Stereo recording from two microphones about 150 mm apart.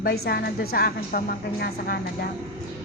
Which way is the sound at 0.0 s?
90° left.